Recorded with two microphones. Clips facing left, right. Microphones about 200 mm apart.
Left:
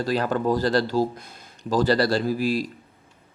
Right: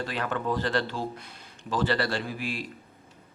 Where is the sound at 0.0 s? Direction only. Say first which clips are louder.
Left 7 dB; 35° left (ahead or behind).